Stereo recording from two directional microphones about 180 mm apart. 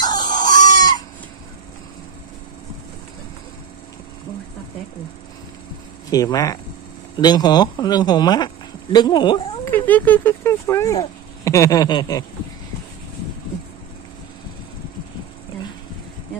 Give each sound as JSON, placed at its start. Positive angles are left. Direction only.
{"t": 0.0, "sound": "chicken", "side_deg": 25}
{"t": 6.0, "sound": "speech", "side_deg": 20}
{"t": 9.7, "sound": "speech", "side_deg": 10}